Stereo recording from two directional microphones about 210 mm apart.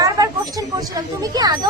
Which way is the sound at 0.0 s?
15° right (ahead or behind).